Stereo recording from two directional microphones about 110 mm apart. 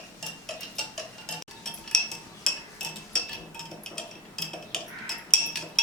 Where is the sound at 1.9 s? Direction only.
5° left (ahead or behind).